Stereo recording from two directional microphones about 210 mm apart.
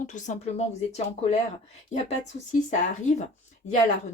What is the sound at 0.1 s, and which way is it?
Speech, 35° left (ahead or behind).